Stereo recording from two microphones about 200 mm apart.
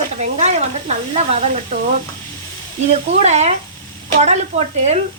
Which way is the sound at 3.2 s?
35° right (ahead or behind).